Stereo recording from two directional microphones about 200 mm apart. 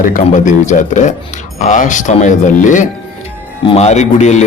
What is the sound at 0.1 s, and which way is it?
A man's voice, 40° left (ahead or behind).